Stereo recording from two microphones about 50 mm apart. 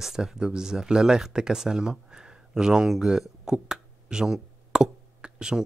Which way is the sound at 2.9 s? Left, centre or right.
Centre.